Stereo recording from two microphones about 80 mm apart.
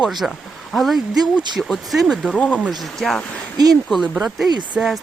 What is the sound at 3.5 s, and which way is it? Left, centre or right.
Speech, right.